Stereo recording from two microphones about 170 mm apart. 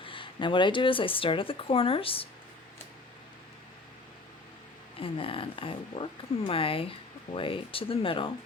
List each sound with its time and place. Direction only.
0.0 s speech: 30° left (ahead or behind)
4.9 s speech: 30° left (ahead or behind)